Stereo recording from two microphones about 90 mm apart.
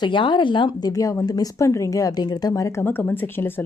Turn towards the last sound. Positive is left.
turn(degrees=25)  # may be behind; listen again after turning